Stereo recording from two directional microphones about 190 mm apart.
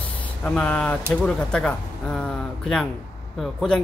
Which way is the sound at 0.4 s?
5° left (ahead or behind).